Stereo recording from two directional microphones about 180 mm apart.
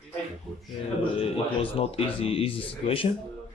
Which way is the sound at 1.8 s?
30° left (ahead or behind).